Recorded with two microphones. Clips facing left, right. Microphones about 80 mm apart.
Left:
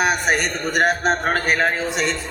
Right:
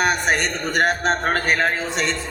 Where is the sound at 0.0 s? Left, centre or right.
Centre.